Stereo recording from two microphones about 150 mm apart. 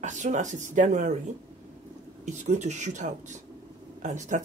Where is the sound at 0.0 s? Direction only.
55° right (ahead or behind).